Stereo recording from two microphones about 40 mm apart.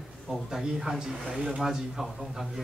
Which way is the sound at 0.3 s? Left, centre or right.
Centre.